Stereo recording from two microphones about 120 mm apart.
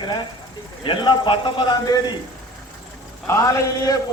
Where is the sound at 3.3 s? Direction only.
25° left (ahead or behind).